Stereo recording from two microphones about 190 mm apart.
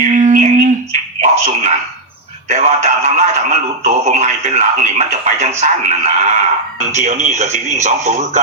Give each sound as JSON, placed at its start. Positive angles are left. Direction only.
{"t": 0.0, "sound": "humming", "side_deg": -40}
{"t": 1.2, "sound": "a sound", "side_deg": -40}
{"t": 2.5, "sound": "speech", "side_deg": -40}